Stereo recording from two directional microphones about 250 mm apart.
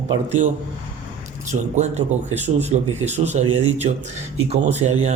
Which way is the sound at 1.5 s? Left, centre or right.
Right.